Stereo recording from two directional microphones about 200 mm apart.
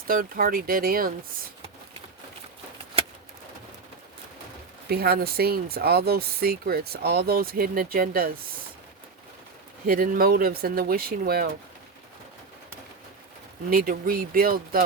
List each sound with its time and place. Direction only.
0.1 s speech: 45° right (ahead or behind)
4.9 s speech: 50° right (ahead or behind)
9.8 s speech: 45° right (ahead or behind)
13.7 s speech: 45° right (ahead or behind)